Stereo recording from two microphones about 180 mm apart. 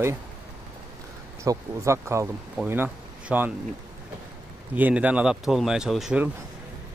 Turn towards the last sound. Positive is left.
turn(degrees=-5)  # may be behind; listen again after turning